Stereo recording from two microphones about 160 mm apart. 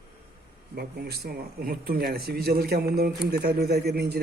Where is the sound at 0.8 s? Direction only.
80° right.